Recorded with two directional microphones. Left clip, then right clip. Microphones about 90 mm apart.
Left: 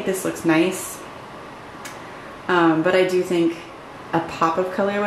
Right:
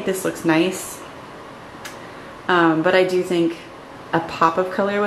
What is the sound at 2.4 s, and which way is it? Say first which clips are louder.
Speech: right 1 dB; 20° right (ahead or behind).